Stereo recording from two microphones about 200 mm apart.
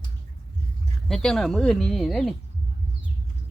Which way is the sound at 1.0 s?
Centre (ahead or behind).